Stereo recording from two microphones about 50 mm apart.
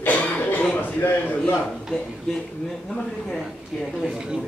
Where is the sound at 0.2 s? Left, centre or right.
Left.